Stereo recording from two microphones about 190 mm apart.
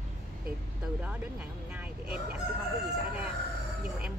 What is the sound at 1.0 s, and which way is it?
Speech, 5° right (ahead or behind).